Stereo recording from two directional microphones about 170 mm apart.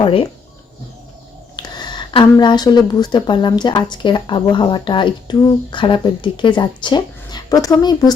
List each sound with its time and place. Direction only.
0.0 s speech: 30° left (ahead or behind)
1.5 s a woman's voice: 25° left (ahead or behind)